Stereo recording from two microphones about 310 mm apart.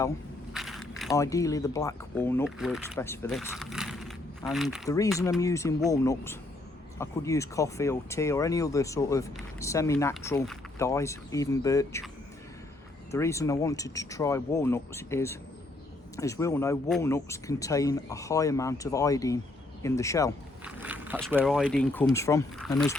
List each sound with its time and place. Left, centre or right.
0.5 s speech: centre
4.9 s speech: centre
13.1 s speech: centre
20.7 s speech: centre